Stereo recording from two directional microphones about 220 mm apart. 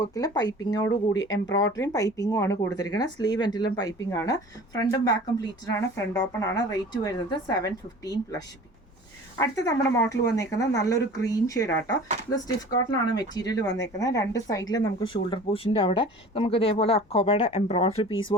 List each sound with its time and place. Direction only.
0.0 s speech: 15° left (ahead or behind)